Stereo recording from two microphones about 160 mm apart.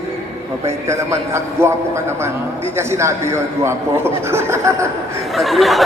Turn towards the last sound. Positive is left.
turn(degrees=0)  # may be behind; listen again after turning